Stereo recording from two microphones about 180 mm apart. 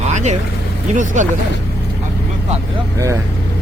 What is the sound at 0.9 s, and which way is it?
Speech, 45° right (ahead or behind).